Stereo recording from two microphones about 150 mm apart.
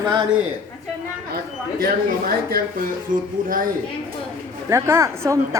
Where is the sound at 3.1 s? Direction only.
60° right (ahead or behind).